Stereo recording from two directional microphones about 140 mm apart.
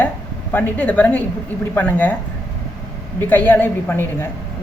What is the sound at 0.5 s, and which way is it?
A woman's voice, 10° left (ahead or behind).